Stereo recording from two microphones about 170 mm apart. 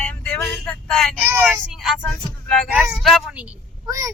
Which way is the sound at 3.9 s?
20° right (ahead or behind).